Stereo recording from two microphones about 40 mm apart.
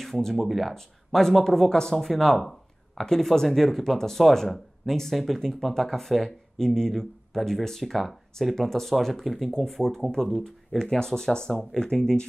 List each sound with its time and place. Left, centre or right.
0.0 s speech: centre
0.7 s speech: centre